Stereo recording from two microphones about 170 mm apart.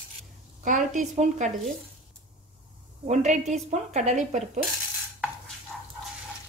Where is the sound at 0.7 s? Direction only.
50° right (ahead or behind).